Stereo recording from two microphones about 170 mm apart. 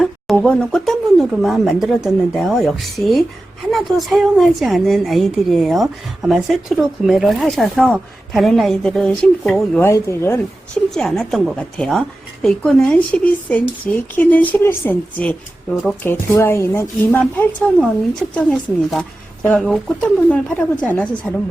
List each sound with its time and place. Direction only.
0.0 s a woman's voice: 5° left (ahead or behind)
9.8 s a woman's voice: 15° left (ahead or behind)
10.9 s a woman's voice: 5° left (ahead or behind)